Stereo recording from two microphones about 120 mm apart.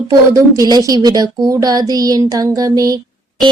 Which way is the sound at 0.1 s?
30° right (ahead or behind).